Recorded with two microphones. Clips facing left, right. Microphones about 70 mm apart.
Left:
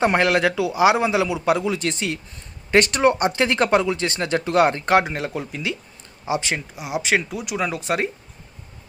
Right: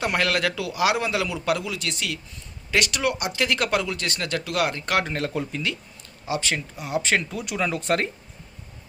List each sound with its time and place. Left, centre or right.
0.0 s speech: left
5.0 s speech: centre
6.2 s speech: left; by 8.1 s centre